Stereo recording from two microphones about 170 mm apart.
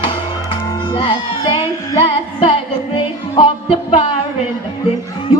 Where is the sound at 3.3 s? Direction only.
30° left (ahead or behind).